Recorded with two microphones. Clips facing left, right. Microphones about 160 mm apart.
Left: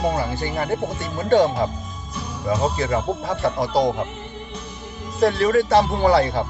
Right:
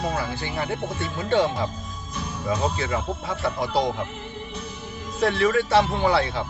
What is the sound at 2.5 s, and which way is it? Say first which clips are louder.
Speech: left 4 dB; 35° left (ahead or behind).